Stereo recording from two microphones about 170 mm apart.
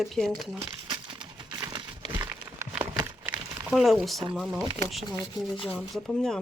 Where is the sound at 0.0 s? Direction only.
Centre (ahead or behind).